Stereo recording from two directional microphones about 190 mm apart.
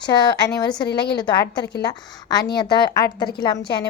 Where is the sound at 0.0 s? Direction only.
25° left (ahead or behind).